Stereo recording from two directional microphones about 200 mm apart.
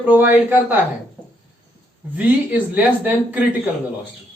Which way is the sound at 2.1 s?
10° right (ahead or behind).